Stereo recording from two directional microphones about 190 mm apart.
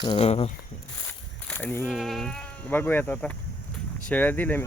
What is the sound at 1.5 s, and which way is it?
Speech, 10° left (ahead or behind).